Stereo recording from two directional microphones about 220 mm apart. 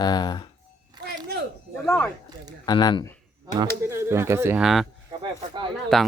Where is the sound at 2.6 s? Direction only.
20° left (ahead or behind).